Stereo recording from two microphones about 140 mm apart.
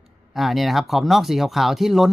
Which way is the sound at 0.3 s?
Centre (ahead or behind).